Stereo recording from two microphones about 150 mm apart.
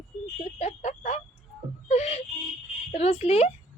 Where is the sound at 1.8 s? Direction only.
45° left (ahead or behind).